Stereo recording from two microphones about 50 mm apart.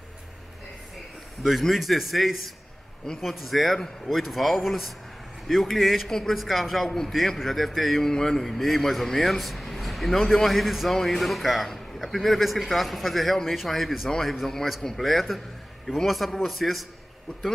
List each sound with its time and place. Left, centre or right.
1.6 s a man's voice: centre